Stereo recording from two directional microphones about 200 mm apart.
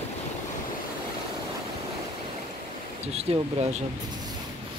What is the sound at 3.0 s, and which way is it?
Speech, 30° right (ahead or behind).